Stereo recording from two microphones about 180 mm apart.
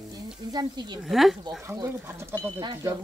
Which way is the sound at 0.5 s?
25° right (ahead or behind).